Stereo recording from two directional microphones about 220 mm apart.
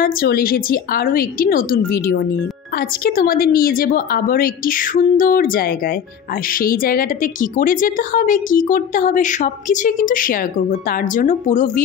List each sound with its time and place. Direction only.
0.0 s speech: 40° left (ahead or behind)